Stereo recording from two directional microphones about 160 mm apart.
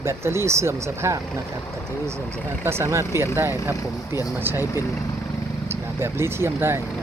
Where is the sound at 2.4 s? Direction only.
15° right (ahead or behind).